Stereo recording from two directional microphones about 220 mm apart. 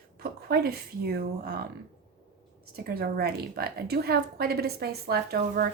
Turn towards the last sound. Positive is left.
turn(degrees=-45)  # may be behind; listen again after turning